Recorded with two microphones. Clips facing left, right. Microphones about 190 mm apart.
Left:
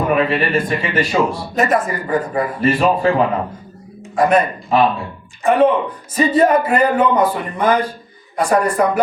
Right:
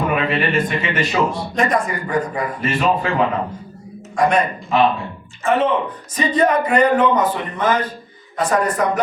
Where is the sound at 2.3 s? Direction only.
35° left (ahead or behind).